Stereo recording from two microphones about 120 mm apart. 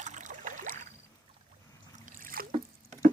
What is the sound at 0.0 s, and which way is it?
Boat, 90° right.